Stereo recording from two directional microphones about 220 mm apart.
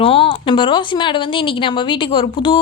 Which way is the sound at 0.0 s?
25° left (ahead or behind).